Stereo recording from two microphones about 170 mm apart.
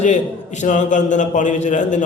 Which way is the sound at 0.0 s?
45° left (ahead or behind).